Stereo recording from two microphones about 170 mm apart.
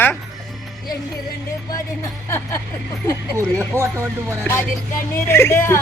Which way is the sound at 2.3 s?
15° left (ahead or behind).